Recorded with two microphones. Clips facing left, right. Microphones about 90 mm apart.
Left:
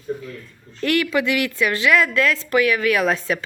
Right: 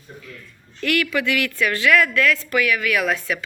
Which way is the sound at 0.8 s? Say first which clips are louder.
Left 2 dB; 25° left (ahead or behind).